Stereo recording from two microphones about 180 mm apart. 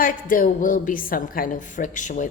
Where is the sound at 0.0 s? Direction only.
50° left (ahead or behind).